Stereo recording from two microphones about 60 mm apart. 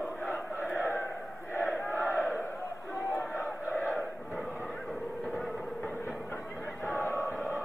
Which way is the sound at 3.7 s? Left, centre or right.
Left.